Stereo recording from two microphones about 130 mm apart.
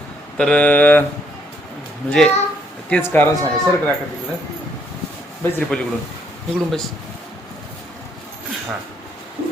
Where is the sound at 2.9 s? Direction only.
15° left (ahead or behind).